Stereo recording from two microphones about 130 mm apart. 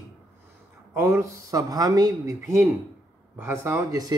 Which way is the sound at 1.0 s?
20° right (ahead or behind).